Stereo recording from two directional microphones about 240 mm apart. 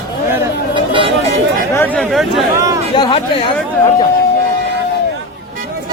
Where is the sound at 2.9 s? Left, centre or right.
Left.